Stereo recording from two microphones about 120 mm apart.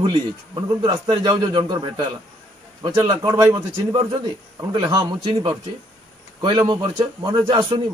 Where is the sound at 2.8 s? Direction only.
30° right (ahead or behind).